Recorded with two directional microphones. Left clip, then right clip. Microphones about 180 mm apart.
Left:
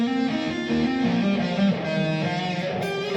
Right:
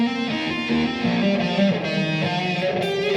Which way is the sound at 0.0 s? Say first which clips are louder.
Right 1 dB; 25° right (ahead or behind).